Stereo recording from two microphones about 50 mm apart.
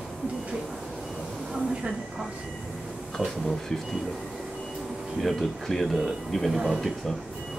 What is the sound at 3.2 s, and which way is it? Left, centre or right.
Speech, centre.